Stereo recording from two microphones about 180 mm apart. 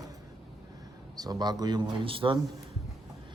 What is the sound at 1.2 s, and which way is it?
Speech, 25° right (ahead or behind).